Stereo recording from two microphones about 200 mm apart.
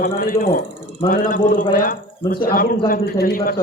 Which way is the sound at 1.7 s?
45° left (ahead or behind).